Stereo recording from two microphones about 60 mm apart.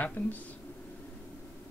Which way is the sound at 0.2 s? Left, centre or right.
Left.